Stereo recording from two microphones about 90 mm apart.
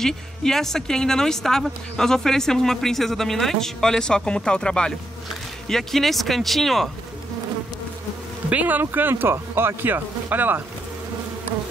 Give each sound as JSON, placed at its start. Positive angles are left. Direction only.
{"t": 0.0, "sound": "a woman's voice", "side_deg": 5}
{"t": 8.5, "sound": "speech", "side_deg": -15}